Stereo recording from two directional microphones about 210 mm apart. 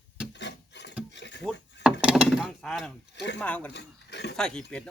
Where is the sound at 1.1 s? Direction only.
55° left (ahead or behind).